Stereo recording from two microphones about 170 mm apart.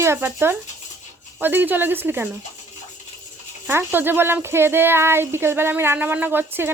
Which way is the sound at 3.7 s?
15° right (ahead or behind).